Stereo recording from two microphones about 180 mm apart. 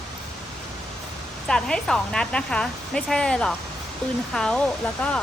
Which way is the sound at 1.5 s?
5° left (ahead or behind).